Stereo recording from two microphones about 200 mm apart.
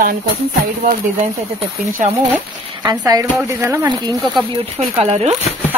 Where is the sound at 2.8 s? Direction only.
20° right (ahead or behind).